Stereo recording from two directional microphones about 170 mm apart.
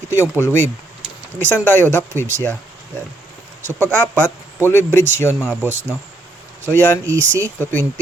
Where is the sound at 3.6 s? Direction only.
10° left (ahead or behind).